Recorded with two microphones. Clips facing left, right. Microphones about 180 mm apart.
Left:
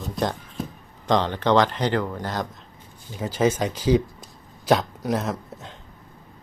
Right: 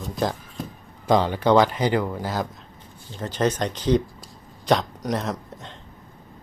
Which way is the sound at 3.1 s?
10° left (ahead or behind).